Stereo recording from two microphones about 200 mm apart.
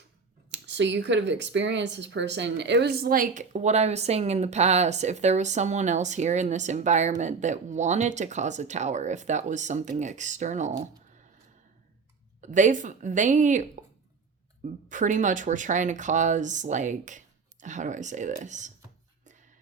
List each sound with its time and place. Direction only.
0.5 s speech: 60° right (ahead or behind); by 10.8 s 35° right (ahead or behind)
12.4 s speech: 40° right (ahead or behind)